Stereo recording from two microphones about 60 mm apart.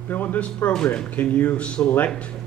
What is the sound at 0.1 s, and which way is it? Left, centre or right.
A man's voice, left.